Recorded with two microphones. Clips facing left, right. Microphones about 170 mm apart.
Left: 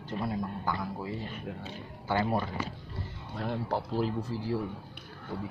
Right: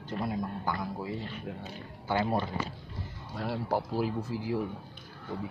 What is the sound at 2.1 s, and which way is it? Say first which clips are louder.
Speech: even; 15° right (ahead or behind).